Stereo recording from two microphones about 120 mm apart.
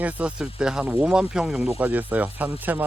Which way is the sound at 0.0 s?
10° right (ahead or behind).